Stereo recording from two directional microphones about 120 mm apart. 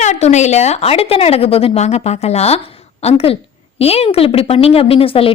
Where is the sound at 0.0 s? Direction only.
75° left (ahead or behind).